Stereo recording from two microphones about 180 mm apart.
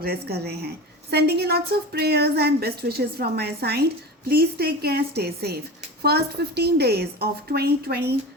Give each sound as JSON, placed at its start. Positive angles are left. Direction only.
{"t": 0.0, "sound": "a woman's voice", "side_deg": -60}